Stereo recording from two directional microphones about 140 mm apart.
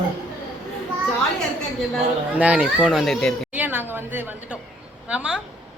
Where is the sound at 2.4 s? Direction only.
10° right (ahead or behind).